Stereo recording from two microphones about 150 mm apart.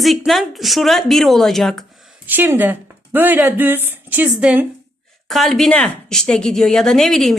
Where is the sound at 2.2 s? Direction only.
15° right (ahead or behind).